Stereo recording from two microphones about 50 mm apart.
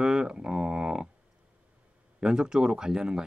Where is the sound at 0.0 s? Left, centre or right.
Centre.